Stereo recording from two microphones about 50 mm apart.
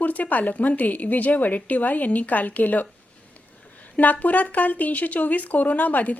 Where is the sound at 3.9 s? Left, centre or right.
Left.